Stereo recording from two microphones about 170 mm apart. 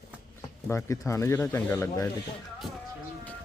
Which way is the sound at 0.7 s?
15° left (ahead or behind).